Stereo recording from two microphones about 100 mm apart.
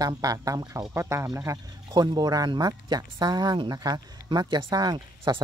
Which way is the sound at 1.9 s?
40° right (ahead or behind).